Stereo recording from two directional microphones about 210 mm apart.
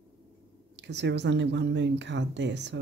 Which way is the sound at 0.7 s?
55° right (ahead or behind).